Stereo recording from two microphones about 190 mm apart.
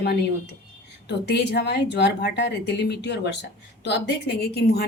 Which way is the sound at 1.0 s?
60° left (ahead or behind).